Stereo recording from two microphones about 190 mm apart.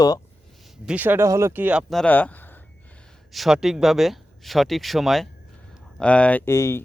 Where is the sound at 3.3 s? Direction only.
Centre (ahead or behind).